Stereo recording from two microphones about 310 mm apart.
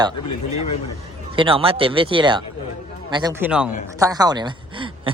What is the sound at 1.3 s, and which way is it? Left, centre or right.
Speech, centre.